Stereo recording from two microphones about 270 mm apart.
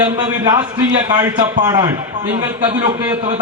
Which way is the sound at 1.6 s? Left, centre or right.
Centre.